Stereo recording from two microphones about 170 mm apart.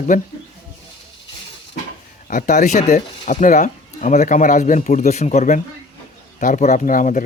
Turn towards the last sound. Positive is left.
turn(degrees=50)  # may be behind; listen again after turning